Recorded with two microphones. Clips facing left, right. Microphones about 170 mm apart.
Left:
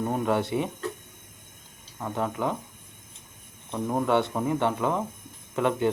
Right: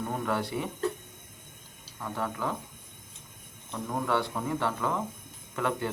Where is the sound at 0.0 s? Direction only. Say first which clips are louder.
Left 5 dB; 20° left (ahead or behind).